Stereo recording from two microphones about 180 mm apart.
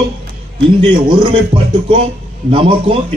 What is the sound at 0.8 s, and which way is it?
Speech, 25° right (ahead or behind).